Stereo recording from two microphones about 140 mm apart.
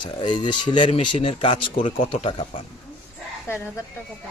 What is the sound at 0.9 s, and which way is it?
Speech, 50° left (ahead or behind).